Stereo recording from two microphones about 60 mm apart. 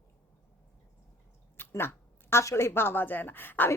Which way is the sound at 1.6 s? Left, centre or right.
Left.